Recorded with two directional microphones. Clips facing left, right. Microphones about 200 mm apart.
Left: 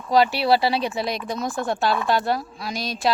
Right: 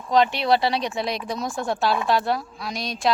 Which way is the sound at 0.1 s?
5° left (ahead or behind).